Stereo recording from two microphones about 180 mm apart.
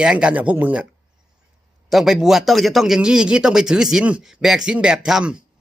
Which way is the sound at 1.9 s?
Centre (ahead or behind).